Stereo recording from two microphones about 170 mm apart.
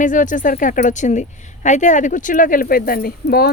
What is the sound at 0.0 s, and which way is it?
A woman's voice, 50° left (ahead or behind).